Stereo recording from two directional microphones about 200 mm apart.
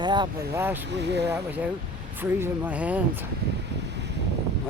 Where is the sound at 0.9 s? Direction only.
60° right (ahead or behind).